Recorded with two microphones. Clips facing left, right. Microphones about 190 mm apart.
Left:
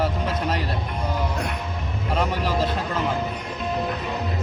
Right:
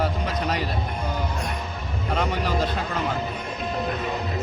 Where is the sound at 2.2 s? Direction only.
5° left (ahead or behind).